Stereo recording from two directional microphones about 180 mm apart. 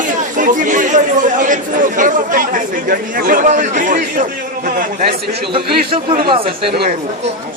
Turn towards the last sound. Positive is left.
turn(degrees=-30)  # may be behind; listen again after turning